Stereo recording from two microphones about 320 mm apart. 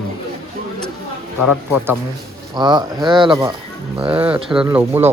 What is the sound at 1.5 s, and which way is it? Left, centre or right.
Speech, centre.